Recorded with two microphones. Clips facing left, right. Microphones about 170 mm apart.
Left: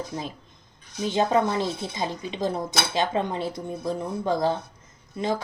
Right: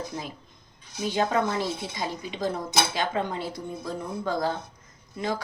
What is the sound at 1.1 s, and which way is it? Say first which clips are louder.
Speech: left 3 dB; 25° left (ahead or behind).